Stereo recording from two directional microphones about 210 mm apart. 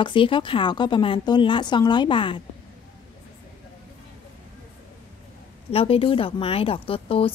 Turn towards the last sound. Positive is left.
turn(degrees=25)  # may be behind; listen again after turning